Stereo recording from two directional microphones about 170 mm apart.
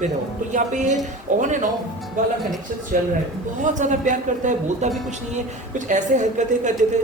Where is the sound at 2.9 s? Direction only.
50° right (ahead or behind).